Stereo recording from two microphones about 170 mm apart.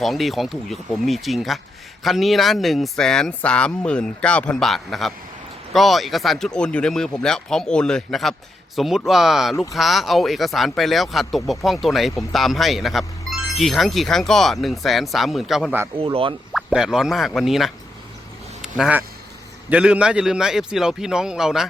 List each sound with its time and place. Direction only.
0.0 s speech: centre (ahead or behind)
16.0 s speech: 35° right (ahead or behind)
16.5 s speech: centre (ahead or behind)